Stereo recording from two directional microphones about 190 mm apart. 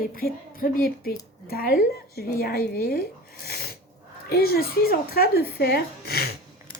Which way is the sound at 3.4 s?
55° left (ahead or behind).